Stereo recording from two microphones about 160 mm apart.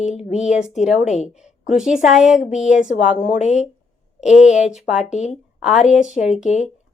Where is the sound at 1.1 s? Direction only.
45° left (ahead or behind).